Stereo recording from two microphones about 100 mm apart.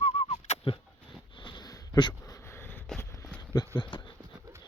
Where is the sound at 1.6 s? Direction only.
40° left (ahead or behind).